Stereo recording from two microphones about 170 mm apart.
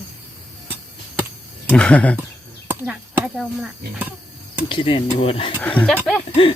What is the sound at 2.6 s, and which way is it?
Speech, 10° right (ahead or behind).